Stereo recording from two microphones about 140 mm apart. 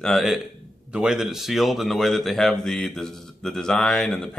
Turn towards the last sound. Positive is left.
turn(degrees=5)  # may be behind; listen again after turning